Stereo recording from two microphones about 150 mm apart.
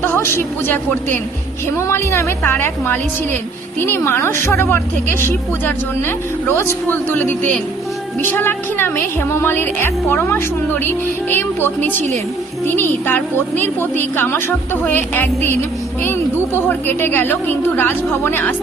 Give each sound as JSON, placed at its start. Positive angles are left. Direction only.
{"t": 0.0, "sound": "a woman's voice", "side_deg": 15}
{"t": 16.6, "sound": "a woman's voice", "side_deg": 15}